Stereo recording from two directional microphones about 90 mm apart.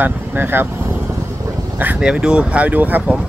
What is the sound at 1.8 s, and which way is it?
Speech, 15° right (ahead or behind).